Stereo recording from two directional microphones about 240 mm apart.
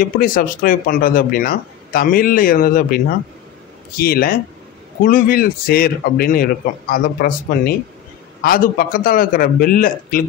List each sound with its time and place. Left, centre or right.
0.0 s speech: left
4.0 s speech: left